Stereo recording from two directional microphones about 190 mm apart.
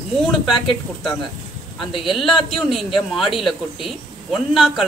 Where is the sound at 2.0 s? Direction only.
Centre (ahead or behind).